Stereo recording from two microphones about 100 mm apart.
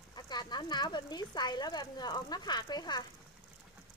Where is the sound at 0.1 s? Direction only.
45° left (ahead or behind).